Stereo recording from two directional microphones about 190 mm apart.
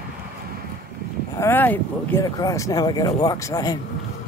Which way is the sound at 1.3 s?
10° left (ahead or behind).